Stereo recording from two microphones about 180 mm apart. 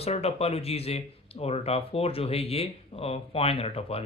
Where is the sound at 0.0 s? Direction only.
35° left (ahead or behind).